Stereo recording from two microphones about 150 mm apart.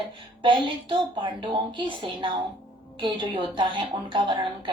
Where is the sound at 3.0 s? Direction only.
35° right (ahead or behind).